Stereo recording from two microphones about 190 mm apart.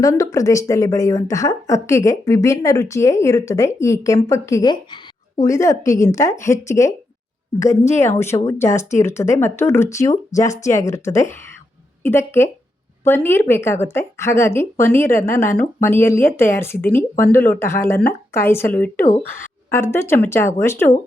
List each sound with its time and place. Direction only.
0.0 s a woman's voice: 15° left (ahead or behind)